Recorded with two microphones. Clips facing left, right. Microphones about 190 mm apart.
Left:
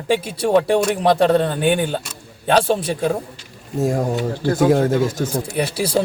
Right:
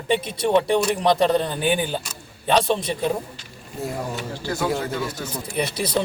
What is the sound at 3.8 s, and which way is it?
Speech, 45° left (ahead or behind).